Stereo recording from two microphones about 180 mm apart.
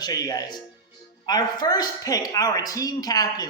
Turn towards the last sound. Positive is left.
turn(degrees=20)  # may be behind; listen again after turning